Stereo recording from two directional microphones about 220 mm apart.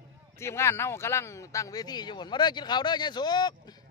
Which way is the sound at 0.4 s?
10° left (ahead or behind).